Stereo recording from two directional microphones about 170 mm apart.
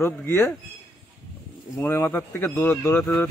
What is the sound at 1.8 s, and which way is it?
A man's voice, 15° left (ahead or behind).